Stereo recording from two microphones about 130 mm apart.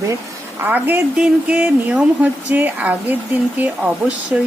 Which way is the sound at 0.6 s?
15° right (ahead or behind).